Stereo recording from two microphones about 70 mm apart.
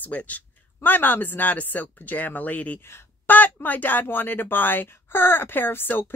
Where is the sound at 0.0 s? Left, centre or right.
Left.